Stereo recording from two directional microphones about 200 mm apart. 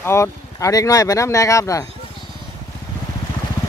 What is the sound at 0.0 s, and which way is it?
Speech, 15° left (ahead or behind).